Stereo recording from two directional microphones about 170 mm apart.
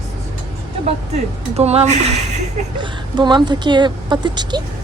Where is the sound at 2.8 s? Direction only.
25° right (ahead or behind).